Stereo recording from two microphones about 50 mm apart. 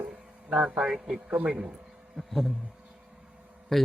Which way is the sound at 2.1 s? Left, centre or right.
Centre.